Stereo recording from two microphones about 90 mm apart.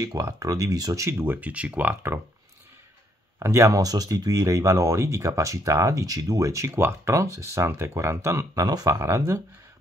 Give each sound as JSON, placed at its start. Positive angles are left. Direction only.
{"t": 0.0, "sound": "speech", "side_deg": -40}
{"t": 3.3, "sound": "speech", "side_deg": -35}
{"t": 8.9, "sound": "speech", "side_deg": -35}